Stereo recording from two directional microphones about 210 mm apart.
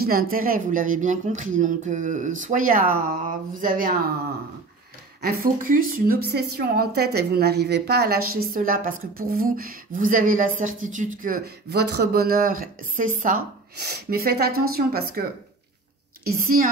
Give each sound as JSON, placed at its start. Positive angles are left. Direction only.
{"t": 0.0, "sound": "speech", "side_deg": -45}
{"t": 5.2, "sound": "a woman's voice", "side_deg": -45}
{"t": 16.3, "sound": "a woman's voice", "side_deg": -40}